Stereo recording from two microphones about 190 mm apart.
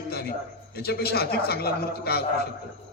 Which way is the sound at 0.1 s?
55° left (ahead or behind).